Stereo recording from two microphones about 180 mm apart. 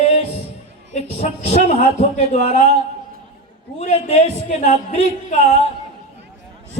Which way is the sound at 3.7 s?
40° left (ahead or behind).